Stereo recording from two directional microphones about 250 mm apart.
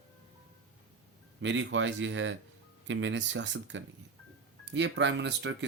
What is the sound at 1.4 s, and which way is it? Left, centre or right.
Speech, right.